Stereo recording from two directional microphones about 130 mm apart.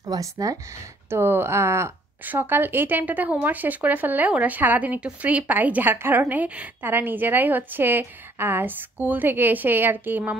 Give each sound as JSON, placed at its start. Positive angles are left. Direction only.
{"t": 0.0, "sound": "a woman's voice", "side_deg": -25}